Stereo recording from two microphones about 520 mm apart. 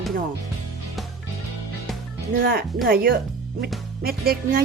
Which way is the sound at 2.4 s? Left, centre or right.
Centre.